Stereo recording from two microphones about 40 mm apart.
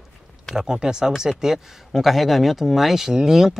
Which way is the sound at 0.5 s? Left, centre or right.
Centre.